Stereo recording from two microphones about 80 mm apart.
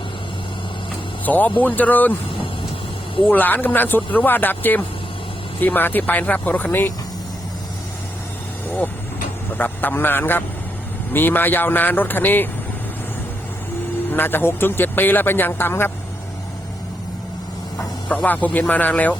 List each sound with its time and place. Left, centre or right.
1.2 s speech: left
3.3 s speech: left
9.6 s a man's voice: left
14.1 s speech: left
18.3 s speech: left